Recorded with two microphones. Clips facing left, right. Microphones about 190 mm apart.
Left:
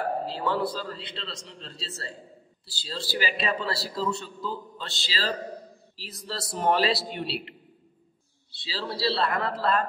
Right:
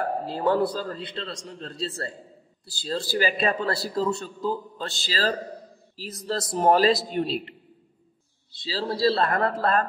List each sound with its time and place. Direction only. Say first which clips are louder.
0.3 s a man's voice: right 5 dB; 50° right (ahead or behind)
8.6 s a man's voice: right 6 dB; 40° right (ahead or behind)